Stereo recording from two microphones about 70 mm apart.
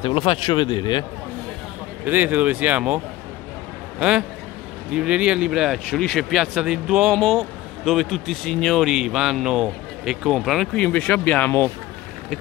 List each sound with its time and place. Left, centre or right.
0.5 s a man's voice: left
2.0 s speech: right
4.0 s a man's voice: centre
8.8 s a man's voice: centre
10.7 s speech: centre